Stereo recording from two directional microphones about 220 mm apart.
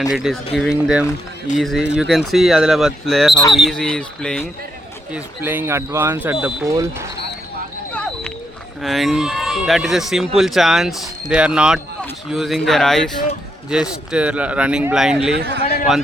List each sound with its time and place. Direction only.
0.1 s speech: centre (ahead or behind)
5.1 s speech: 10° right (ahead or behind)
8.8 s speech: centre (ahead or behind)
15.4 s a man's voice: 45° right (ahead or behind)